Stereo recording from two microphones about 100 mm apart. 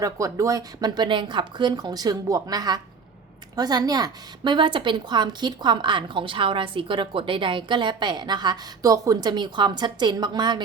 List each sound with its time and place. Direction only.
0.0 s speech: 35° right (ahead or behind)